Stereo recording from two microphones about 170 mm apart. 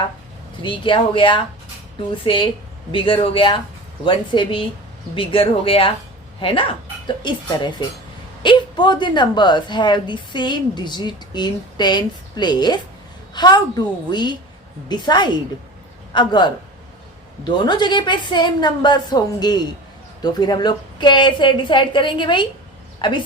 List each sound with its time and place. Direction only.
0.6 s a woman's voice: 30° left (ahead or behind)